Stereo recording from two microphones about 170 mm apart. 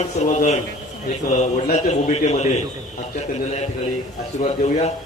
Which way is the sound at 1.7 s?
40° left (ahead or behind).